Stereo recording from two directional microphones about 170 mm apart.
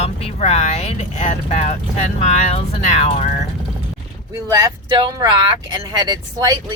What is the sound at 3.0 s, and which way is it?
Speech, 40° left (ahead or behind).